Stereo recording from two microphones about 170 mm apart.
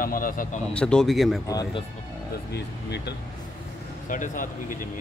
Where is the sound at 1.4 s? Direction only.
20° left (ahead or behind).